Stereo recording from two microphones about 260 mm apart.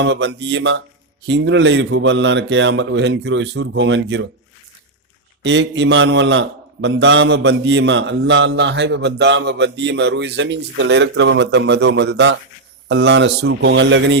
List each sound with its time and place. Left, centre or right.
0.0 s a man's voice: right
5.4 s a man's voice: right